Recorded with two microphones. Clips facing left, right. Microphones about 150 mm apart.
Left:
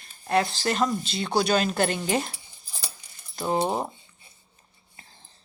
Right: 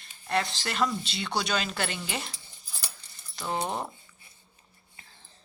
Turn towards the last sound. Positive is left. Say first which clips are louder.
# left 2 dB
turn(degrees=35)  # may be behind; listen again after turning